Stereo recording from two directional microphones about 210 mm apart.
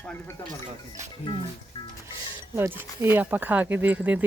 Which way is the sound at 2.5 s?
10° right (ahead or behind).